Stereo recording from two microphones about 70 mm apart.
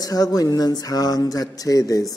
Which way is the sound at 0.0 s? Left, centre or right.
Left.